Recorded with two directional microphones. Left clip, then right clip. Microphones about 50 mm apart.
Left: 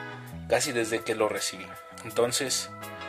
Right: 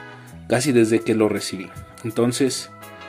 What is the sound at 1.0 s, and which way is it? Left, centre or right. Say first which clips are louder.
Speech: right 7 dB; right.